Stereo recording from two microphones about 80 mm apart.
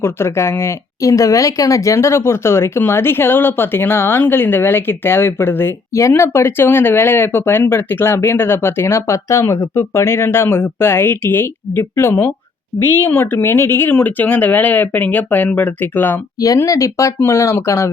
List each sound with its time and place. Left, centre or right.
0.0 s speech: left
16.4 s speech: left